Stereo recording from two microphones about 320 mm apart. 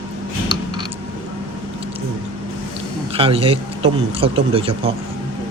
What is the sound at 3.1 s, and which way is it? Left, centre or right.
Speech, centre.